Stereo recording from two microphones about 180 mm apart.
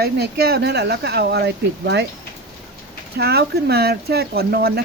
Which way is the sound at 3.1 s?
65° right (ahead or behind).